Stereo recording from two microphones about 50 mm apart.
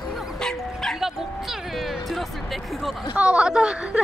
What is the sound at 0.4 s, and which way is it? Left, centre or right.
Bow-wow, centre.